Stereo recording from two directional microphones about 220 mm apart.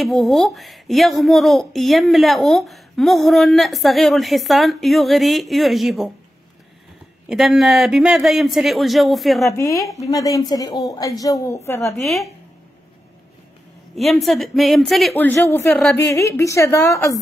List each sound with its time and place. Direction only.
0.0 s speech: centre (ahead or behind)
7.2 s speech: centre (ahead or behind)
9.5 s a woman's voice: 15° left (ahead or behind)
9.8 s speech: centre (ahead or behind)
10.0 s a woman's voice: 15° left (ahead or behind)
11.9 s speech: centre (ahead or behind)
13.9 s a woman's voice: centre (ahead or behind)